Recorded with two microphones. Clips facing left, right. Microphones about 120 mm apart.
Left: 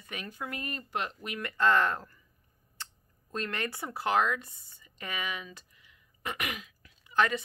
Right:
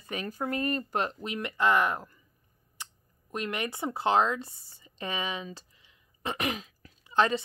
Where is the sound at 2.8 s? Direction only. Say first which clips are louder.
Right 1 dB; 15° right (ahead or behind).